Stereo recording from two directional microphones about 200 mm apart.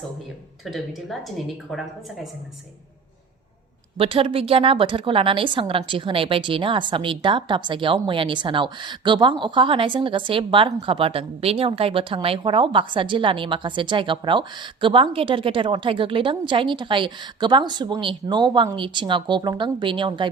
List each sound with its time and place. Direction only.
0.6 s speech: centre (ahead or behind)
3.9 s a woman's voice: 30° right (ahead or behind)